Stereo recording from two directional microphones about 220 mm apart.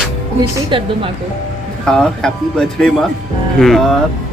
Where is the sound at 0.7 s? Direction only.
25° right (ahead or behind).